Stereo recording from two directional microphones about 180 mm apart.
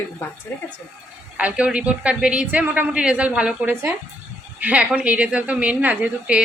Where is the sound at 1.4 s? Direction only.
5° right (ahead or behind).